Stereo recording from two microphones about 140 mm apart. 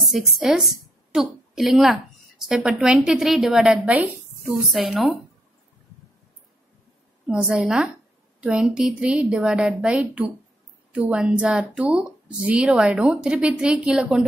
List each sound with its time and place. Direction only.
0.0 s a woman's voice: 5° right (ahead or behind)
7.2 s speech: 5° right (ahead or behind)